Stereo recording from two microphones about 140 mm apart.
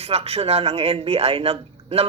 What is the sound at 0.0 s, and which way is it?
Speech, 45° right (ahead or behind).